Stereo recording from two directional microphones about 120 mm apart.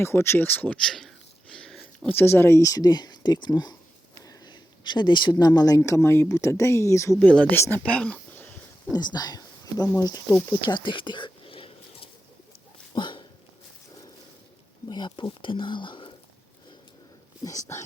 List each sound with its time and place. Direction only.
0.0 s speech: 20° left (ahead or behind); by 1.1 s 5° left (ahead or behind)
1.5 s a sound: 5° left (ahead or behind)
2.0 s speech: 20° left (ahead or behind)
7.3 s speech: 10° left (ahead or behind)
8.9 s speech: 35° left (ahead or behind)
10.7 s a sound: 40° left (ahead or behind)
14.8 s speech: 35° left (ahead or behind)
17.4 s speech: 30° left (ahead or behind)